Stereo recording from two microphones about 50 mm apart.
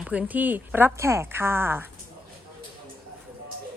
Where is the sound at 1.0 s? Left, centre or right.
Right.